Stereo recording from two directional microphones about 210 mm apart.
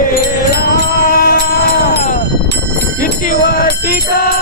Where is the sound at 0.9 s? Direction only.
45° left (ahead or behind).